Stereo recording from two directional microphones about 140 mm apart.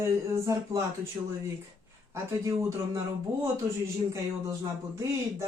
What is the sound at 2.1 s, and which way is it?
Speech, 20° right (ahead or behind).